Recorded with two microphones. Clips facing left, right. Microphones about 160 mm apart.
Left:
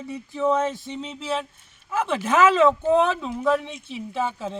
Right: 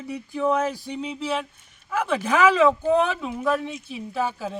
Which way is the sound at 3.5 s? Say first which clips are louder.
Left 2 dB; 25° left (ahead or behind).